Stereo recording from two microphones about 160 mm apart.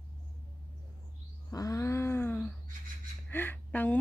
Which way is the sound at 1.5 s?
20° left (ahead or behind).